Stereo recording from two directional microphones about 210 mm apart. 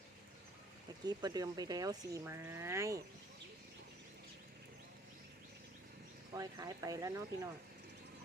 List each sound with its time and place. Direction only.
1.0 s speech: 20° right (ahead or behind)
6.3 s speech: 15° right (ahead or behind)